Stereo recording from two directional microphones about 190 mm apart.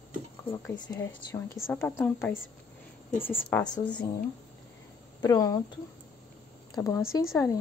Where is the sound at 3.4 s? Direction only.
10° left (ahead or behind).